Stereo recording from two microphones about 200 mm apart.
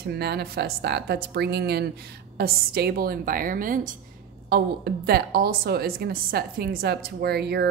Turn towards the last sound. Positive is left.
turn(degrees=-55)  # may be behind; listen again after turning